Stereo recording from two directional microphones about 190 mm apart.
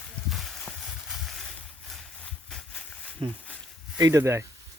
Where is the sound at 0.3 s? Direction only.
Centre (ahead or behind).